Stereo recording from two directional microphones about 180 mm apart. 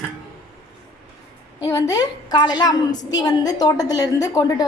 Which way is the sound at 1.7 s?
20° left (ahead or behind).